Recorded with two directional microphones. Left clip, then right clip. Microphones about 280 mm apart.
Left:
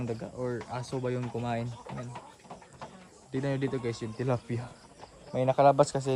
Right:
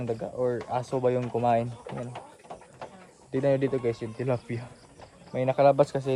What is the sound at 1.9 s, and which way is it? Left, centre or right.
Speech, right.